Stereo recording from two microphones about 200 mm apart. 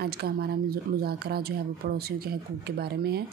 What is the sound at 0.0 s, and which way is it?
Speech, 50° right (ahead or behind).